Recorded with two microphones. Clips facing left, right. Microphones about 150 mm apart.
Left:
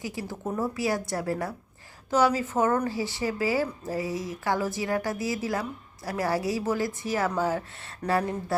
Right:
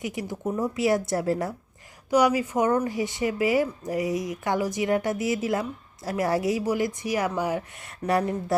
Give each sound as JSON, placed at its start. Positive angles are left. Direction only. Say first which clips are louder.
{"t": 0.0, "sound": "speech", "louder": "right 3 dB", "side_deg": -20}
{"t": 2.0, "sound": "speech", "louder": "right 2 dB", "side_deg": -15}